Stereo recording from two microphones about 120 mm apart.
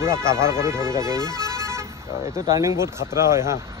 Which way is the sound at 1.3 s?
25° right (ahead or behind).